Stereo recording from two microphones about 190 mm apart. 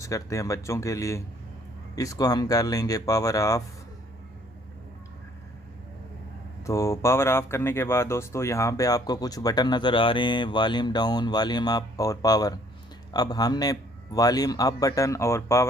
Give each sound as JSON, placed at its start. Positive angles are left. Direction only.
{"t": 0.0, "sound": "speech", "side_deg": 15}
{"t": 6.7, "sound": "speech", "side_deg": 15}